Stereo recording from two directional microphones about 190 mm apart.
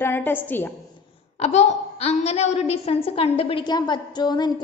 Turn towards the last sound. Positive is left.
turn(degrees=20)  # may be behind; listen again after turning